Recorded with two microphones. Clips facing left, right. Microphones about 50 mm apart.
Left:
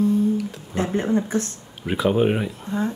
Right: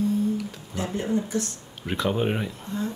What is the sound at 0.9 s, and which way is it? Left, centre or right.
Speech, left.